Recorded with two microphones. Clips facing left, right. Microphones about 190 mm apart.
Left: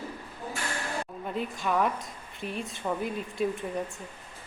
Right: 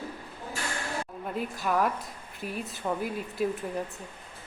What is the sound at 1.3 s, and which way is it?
A woman's voice, 5° right (ahead or behind).